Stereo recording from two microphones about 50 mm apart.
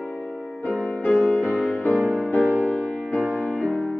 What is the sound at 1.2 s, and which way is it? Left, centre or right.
Music, left.